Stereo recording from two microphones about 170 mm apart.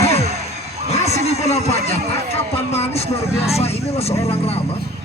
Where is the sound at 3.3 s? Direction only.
35° left (ahead or behind).